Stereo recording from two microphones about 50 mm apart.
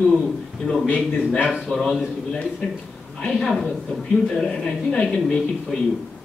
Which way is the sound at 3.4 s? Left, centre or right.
Centre.